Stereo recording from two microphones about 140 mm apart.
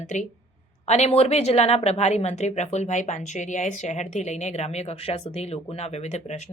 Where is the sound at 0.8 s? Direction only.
50° left (ahead or behind).